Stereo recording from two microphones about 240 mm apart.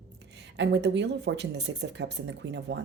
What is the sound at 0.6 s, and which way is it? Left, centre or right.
A woman's voice, right.